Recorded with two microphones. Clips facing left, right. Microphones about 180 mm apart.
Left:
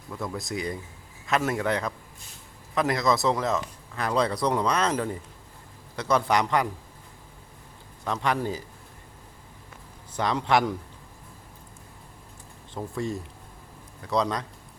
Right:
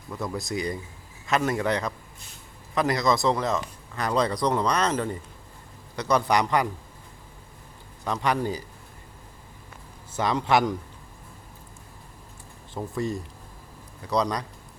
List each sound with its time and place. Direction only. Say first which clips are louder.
0.1 s speech: right 2 dB; 5° right (ahead or behind)
8.0 s speech: right 1 dB; centre (ahead or behind)
10.2 s speech: right 1 dB; 5° right (ahead or behind)
12.7 s speech: right 2 dB; centre (ahead or behind)